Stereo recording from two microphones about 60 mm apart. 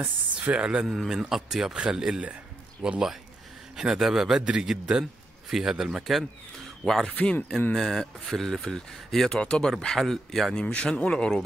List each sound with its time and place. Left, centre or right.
0.0 s speech: right
0.7 s a man's voice: centre
6.8 s speech: centre
7.1 s speech: left
7.7 s speech: centre
10.5 s speech: centre